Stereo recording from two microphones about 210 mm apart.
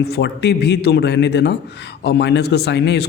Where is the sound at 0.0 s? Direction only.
50° left (ahead or behind).